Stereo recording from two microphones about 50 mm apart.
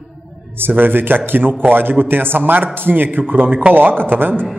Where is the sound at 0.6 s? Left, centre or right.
Right.